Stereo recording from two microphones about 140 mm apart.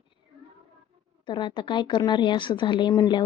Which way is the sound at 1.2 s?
35° left (ahead or behind).